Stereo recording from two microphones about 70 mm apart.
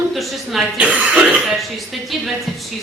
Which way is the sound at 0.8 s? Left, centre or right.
Centre.